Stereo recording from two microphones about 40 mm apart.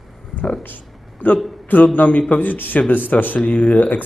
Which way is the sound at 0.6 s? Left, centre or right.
Left.